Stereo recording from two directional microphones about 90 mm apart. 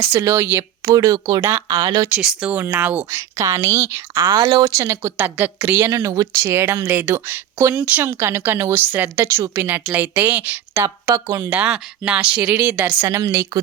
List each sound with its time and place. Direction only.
0.1 s speech: 30° right (ahead or behind)
0.9 s speech: 45° right (ahead or behind)
1.4 s speech: 30° right (ahead or behind)
1.6 s speech: 40° right (ahead or behind)
2.1 s speech: 10° right (ahead or behind)
3.1 s speech: 35° right (ahead or behind)
4.3 s speech: 55° right (ahead or behind)
4.8 s speech: 30° right (ahead or behind)
6.5 s speech: 30° right (ahead or behind)
11.1 s speech: 40° right (ahead or behind)
11.4 s speech: 20° right (ahead or behind)
13.1 s speech: 30° right (ahead or behind)